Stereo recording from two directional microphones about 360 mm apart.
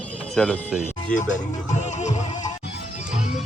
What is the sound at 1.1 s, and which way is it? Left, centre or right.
Speech, centre.